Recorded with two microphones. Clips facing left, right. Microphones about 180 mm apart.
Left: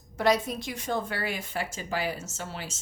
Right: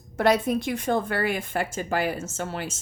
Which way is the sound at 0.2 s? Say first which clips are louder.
Right 4 dB; 55° right (ahead or behind).